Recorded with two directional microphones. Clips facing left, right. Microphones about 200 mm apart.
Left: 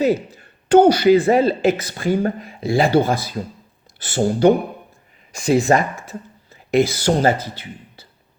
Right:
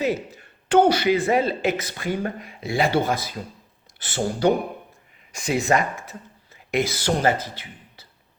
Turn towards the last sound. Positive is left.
turn(degrees=30)  # may be behind; listen again after turning